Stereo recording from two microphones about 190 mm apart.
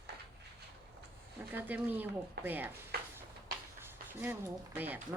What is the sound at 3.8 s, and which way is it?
Speech, 10° right (ahead or behind).